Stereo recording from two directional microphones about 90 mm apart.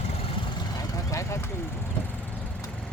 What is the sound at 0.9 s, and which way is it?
Vehicle, 35° left (ahead or behind).